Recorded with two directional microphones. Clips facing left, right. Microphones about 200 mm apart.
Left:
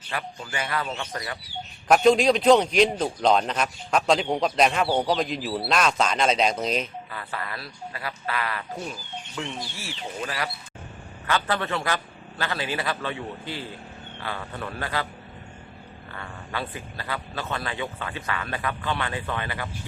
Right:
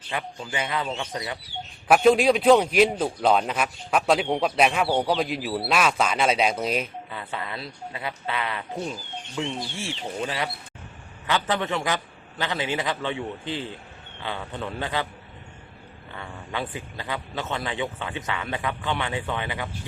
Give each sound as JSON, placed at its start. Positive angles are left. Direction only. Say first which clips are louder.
{"t": 0.1, "sound": "speech", "louder": "right 2 dB", "side_deg": -15}
{"t": 1.9, "sound": "a man's voice", "louder": "even", "side_deg": -5}
{"t": 7.1, "sound": "speech", "louder": "right 1 dB", "side_deg": -20}
{"t": 16.1, "sound": "speech", "louder": "right 1 dB", "side_deg": -15}